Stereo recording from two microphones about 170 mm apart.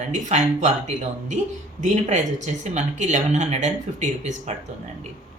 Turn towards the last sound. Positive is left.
turn(degrees=-45)  # may be behind; listen again after turning